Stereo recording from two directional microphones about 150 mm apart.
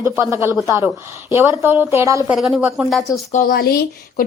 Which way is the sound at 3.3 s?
85° left.